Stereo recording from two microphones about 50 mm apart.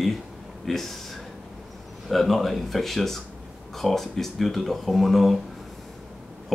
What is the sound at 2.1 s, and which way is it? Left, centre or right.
Speech, centre.